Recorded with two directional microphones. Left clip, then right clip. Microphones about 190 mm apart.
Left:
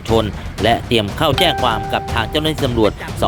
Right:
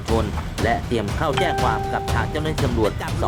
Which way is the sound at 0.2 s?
35° left (ahead or behind).